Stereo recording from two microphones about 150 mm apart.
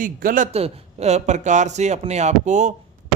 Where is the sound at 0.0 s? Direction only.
70° right (ahead or behind).